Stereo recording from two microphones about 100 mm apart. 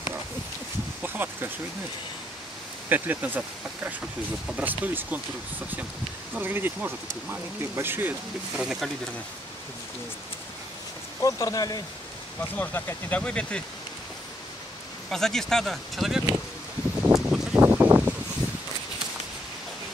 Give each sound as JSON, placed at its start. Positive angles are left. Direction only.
{"t": 1.0, "sound": "a sound", "side_deg": -20}
{"t": 2.9, "sound": "speech", "side_deg": -15}
{"t": 6.3, "sound": "speech", "side_deg": -20}
{"t": 8.5, "sound": "speech", "side_deg": -5}
{"t": 11.1, "sound": "speech", "side_deg": 35}
{"t": 12.4, "sound": "speech", "side_deg": 20}
{"t": 15.0, "sound": "speech", "side_deg": 5}
{"t": 17.1, "sound": "a sound", "side_deg": -5}
{"t": 17.6, "sound": "a sound", "side_deg": -20}